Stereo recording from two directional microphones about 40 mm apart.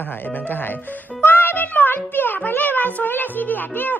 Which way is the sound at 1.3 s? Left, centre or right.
Left.